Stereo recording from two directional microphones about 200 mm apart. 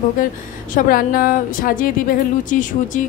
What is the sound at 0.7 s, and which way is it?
Speech, 45° left (ahead or behind).